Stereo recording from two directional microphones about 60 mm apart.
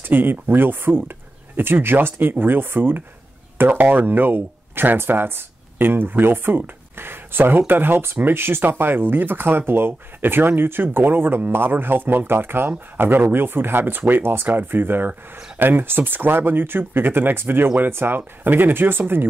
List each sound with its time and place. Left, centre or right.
0.0 s speech: right